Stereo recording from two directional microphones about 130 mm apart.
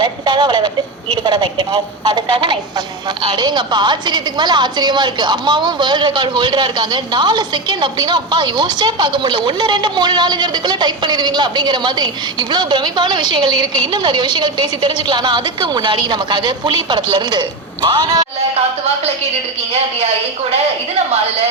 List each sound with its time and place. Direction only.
0.0 s a woman's voice: 35° right (ahead or behind)